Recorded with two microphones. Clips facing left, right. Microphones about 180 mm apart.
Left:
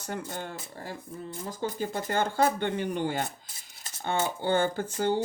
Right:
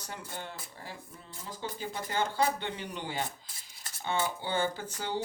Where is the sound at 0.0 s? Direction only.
50° left (ahead or behind).